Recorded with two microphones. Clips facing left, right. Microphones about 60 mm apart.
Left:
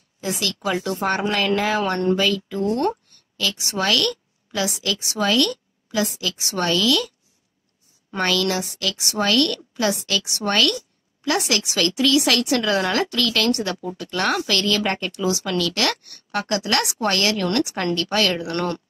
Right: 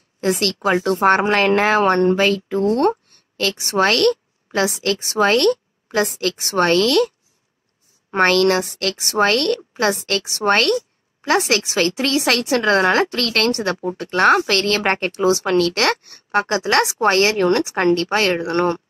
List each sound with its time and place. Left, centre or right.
0.2 s a woman's voice: right
16.1 s speech: right